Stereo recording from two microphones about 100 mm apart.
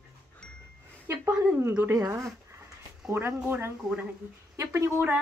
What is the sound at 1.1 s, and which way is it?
Speech, 20° right (ahead or behind).